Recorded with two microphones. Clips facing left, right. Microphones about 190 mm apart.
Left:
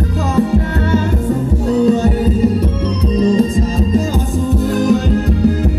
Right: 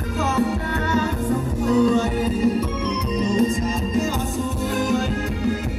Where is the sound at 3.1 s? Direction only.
35° left (ahead or behind).